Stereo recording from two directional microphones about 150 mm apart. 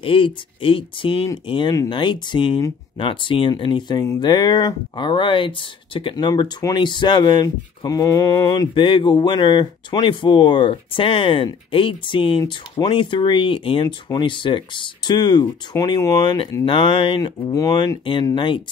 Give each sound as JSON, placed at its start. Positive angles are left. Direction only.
{"t": 0.0, "sound": "speech", "side_deg": 35}
{"t": 4.0, "sound": "speech", "side_deg": 20}
{"t": 4.3, "sound": "speech", "side_deg": 30}